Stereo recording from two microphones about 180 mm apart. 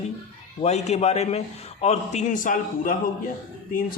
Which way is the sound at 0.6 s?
35° left (ahead or behind).